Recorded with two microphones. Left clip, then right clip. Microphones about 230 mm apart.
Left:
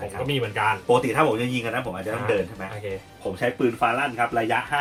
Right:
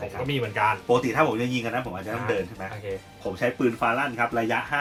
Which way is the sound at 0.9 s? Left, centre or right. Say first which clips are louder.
Left 2 dB; centre.